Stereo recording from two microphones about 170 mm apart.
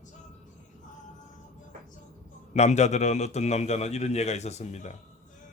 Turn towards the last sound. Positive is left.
turn(degrees=40)  # may be behind; listen again after turning